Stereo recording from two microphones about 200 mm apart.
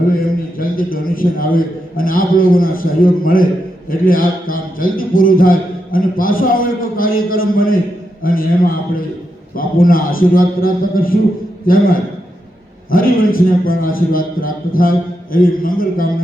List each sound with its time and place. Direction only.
0.6 s a man's voice: 45° left (ahead or behind)